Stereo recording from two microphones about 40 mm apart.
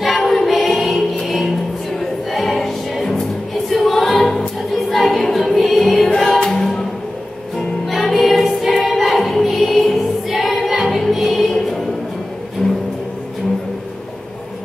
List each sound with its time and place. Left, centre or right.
0.0 s music: centre
6.0 s music: centre
10.2 s singing: centre
11.1 s music: centre
12.6 s vehicle: left